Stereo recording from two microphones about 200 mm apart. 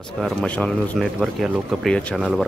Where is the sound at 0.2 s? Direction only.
5° left (ahead or behind).